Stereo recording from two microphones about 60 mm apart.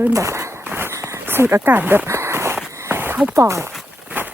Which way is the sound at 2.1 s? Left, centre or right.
Right.